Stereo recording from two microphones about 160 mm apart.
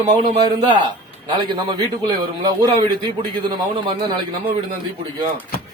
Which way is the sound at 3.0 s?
30° right (ahead or behind).